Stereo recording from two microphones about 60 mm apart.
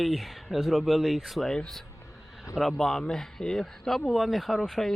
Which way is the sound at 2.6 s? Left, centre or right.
Centre.